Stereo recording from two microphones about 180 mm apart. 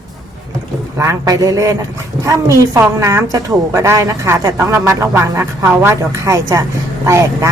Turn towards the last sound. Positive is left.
turn(degrees=-15)  # may be behind; listen again after turning